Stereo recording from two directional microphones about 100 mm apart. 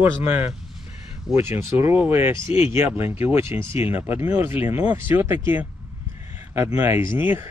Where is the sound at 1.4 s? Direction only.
25° right (ahead or behind).